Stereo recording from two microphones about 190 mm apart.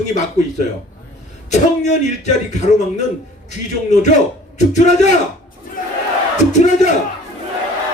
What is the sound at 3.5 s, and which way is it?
Speech, 40° left (ahead or behind).